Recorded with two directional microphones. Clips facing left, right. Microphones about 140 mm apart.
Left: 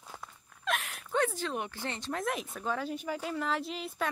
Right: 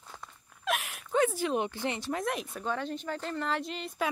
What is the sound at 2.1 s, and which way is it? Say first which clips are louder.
Speech: right 2 dB; centre (ahead or behind).